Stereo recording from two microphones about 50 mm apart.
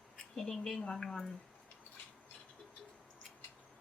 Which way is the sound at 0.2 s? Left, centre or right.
Centre.